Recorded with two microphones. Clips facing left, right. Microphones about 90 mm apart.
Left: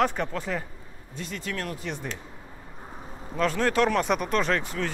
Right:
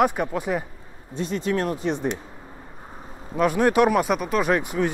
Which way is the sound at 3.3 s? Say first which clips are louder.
Right 5 dB; 15° right (ahead or behind).